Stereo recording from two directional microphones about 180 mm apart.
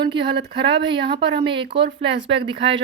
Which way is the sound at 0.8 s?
25° right (ahead or behind).